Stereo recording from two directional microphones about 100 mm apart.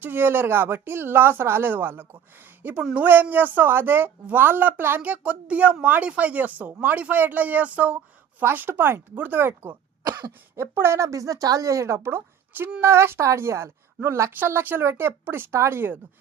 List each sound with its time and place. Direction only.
0.0 s a woman's voice: 20° right (ahead or behind)
10.0 s cough: 45° right (ahead or behind)
10.5 s a woman's voice: 25° right (ahead or behind)